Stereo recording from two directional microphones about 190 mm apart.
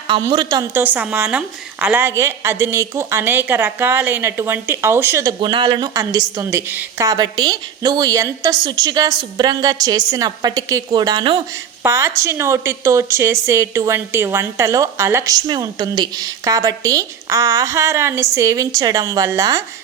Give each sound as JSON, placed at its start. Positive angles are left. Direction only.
{"t": 0.1, "sound": "a woman's voice", "side_deg": -25}
{"t": 0.7, "sound": "a woman's voice", "side_deg": -10}
{"t": 11.8, "sound": "a woman's voice", "side_deg": -15}